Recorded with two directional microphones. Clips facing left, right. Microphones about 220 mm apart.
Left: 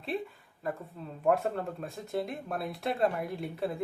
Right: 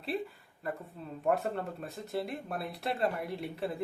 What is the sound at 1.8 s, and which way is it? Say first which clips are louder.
Speech: left 2 dB; centre (ahead or behind).